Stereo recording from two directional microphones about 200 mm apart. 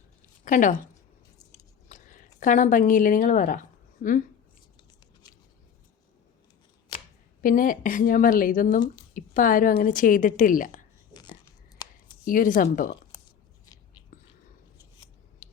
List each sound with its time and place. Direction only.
0.4 s speech: 40° left (ahead or behind)
1.9 s speech: 40° left (ahead or behind)
7.4 s a woman's voice: 45° left (ahead or behind)
11.1 s dog: 20° left (ahead or behind)
11.8 s a sound: 20° left (ahead or behind)
12.2 s a woman's voice: 40° left (ahead or behind)